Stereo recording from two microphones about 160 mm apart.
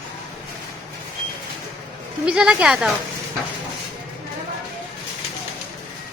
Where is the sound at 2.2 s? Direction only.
5° right (ahead or behind).